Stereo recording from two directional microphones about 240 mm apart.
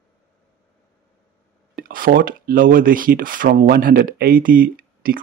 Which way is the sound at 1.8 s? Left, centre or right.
Right.